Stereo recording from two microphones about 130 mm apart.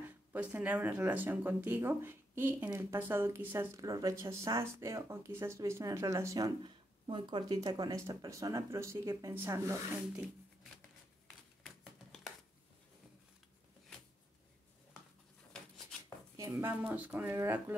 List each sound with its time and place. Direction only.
0.0 s speech: 15° right (ahead or behind)
11.6 s a sound: centre (ahead or behind)
16.3 s speech: 20° right (ahead or behind)